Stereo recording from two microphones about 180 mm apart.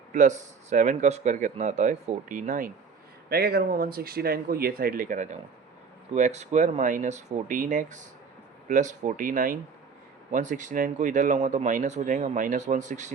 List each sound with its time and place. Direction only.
0.1 s speech: 45° right (ahead or behind)
3.2 s speech: 60° right (ahead or behind); by 13.1 s 45° right (ahead or behind)